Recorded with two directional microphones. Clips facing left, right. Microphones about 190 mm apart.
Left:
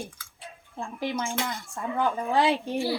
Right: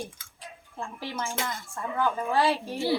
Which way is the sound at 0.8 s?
15° left (ahead or behind).